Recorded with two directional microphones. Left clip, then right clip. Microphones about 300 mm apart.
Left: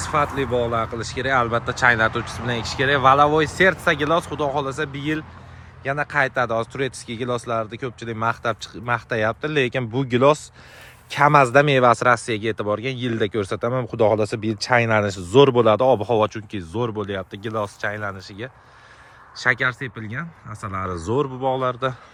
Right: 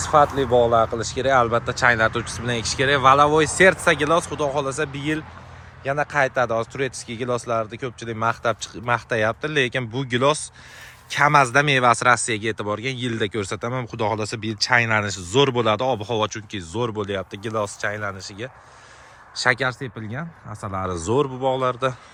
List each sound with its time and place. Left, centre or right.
0.0 s speech: centre